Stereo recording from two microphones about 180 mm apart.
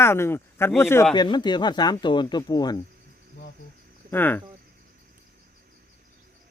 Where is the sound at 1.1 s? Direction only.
25° left (ahead or behind).